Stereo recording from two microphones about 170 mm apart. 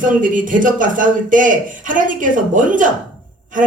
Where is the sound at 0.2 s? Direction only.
50° right (ahead or behind).